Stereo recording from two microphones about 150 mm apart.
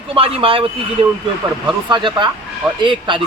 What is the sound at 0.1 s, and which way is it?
Speech, 40° right (ahead or behind).